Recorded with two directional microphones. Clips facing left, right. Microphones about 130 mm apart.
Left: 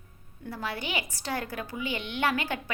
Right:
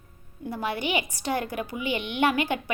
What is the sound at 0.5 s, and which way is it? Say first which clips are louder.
A woman's voice: right 6 dB; 20° right (ahead or behind).